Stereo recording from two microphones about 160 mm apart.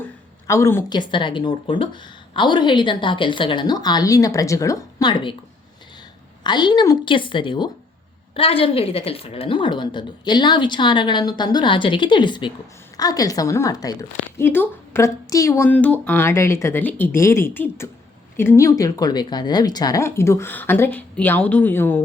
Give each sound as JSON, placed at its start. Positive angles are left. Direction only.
{"t": 0.0, "sound": "a sound", "side_deg": 15}
{"t": 0.9, "sound": "a woman's voice", "side_deg": 30}
{"t": 6.4, "sound": "a woman's voice", "side_deg": 30}